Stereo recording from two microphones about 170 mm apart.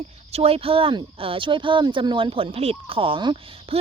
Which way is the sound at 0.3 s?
35° right (ahead or behind).